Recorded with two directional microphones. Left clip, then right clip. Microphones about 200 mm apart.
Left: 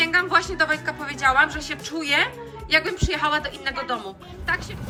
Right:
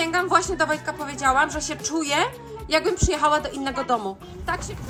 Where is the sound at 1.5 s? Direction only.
30° right (ahead or behind).